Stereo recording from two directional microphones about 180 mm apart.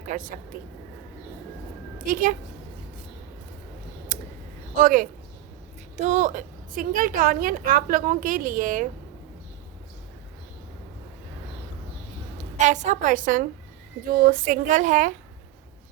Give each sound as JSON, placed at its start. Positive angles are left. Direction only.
{"t": 0.1, "sound": "a woman's voice", "side_deg": -45}
{"t": 4.1, "sound": "a sound", "side_deg": -50}
{"t": 4.7, "sound": "a woman's voice", "side_deg": -50}
{"t": 12.4, "sound": "a woman's voice", "side_deg": -40}